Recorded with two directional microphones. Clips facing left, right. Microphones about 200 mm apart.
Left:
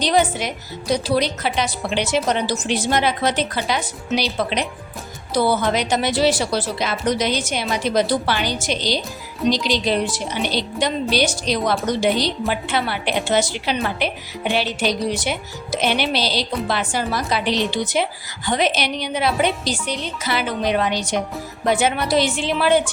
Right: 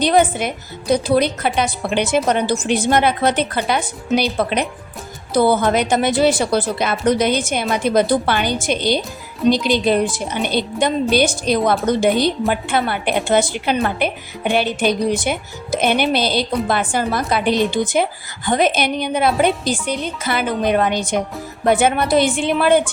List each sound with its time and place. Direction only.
0.0 s speech: 55° right (ahead or behind)